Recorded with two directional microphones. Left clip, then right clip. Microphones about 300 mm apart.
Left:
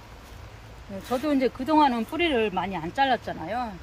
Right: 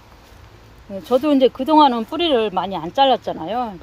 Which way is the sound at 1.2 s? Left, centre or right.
Right.